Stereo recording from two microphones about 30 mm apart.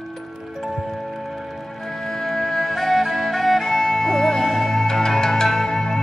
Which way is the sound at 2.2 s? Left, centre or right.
Centre.